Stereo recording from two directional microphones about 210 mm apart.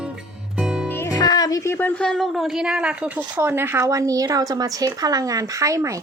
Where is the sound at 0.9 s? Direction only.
15° left (ahead or behind).